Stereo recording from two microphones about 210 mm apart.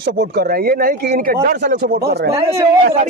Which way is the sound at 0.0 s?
50° right (ahead or behind).